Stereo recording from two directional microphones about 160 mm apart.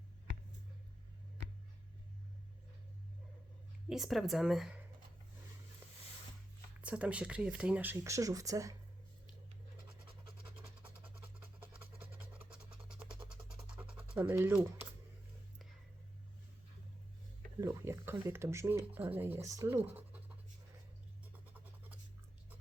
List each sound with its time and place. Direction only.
3.8 s speech: centre (ahead or behind)
6.8 s speech: 10° right (ahead or behind)
13.3 s a sound: 5° right (ahead or behind)
14.2 s speech: 15° right (ahead or behind)
17.6 s speech: 15° right (ahead or behind)
21.3 s a sound: 10° right (ahead or behind)